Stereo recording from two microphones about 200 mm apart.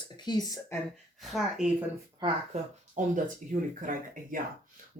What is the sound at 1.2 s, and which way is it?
Speech, centre (ahead or behind).